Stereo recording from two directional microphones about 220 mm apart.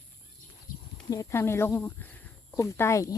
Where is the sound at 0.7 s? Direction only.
40° left (ahead or behind).